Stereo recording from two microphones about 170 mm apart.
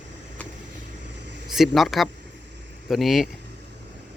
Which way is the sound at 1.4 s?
Centre (ahead or behind).